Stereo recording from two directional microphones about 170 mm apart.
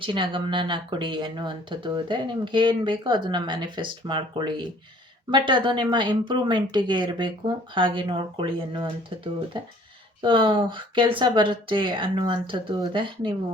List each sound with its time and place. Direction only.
0.0 s speech: 30° right (ahead or behind)